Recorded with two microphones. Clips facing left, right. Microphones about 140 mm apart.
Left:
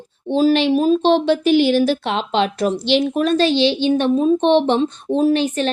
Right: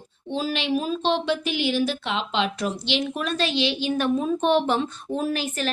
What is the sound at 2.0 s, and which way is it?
A woman's voice, 45° left (ahead or behind).